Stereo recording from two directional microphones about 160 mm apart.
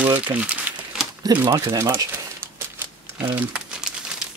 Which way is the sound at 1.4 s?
20° right (ahead or behind).